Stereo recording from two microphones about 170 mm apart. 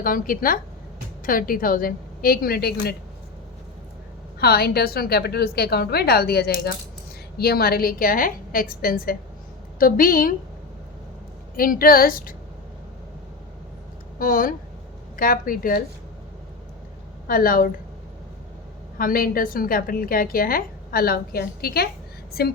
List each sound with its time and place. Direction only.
0.0 s a woman's voice: 55° left (ahead or behind)
4.4 s a woman's voice: 65° left (ahead or behind)
11.5 s a woman's voice: 60° left (ahead or behind)
14.2 s a woman's voice: 55° left (ahead or behind)
17.2 s a woman's voice: 55° left (ahead or behind)
18.9 s a woman's voice: 55° left (ahead or behind)
22.3 s a sound: 65° left (ahead or behind)